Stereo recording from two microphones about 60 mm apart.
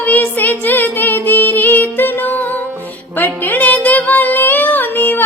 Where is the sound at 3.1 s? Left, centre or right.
Left.